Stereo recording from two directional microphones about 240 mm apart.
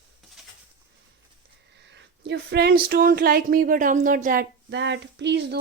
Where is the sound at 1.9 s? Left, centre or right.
Right.